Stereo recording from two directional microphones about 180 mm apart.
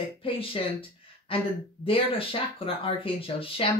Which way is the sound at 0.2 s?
30° left (ahead or behind).